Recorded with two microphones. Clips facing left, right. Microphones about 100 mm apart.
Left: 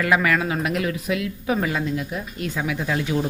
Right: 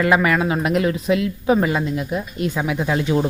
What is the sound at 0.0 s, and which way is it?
Speech, 25° right (ahead or behind).